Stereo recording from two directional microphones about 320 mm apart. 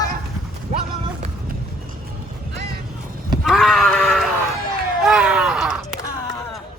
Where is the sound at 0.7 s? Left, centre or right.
Right.